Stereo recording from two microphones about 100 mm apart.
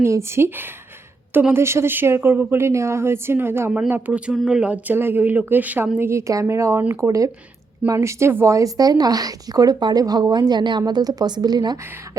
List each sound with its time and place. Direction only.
0.0 s a woman's voice: 25° right (ahead or behind)
4.4 s a woman's voice: 5° right (ahead or behind); by 11.8 s 45° right (ahead or behind)